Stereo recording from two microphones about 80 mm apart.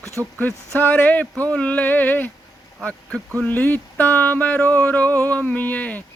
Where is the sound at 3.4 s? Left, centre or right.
Left.